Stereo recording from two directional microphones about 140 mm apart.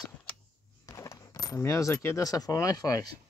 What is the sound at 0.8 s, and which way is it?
Coin, 20° left (ahead or behind).